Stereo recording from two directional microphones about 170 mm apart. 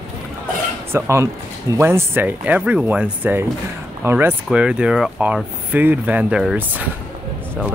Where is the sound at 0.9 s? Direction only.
15° right (ahead or behind).